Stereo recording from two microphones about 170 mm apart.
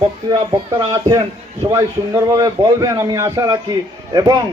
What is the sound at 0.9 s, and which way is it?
A man's voice, 20° right (ahead or behind).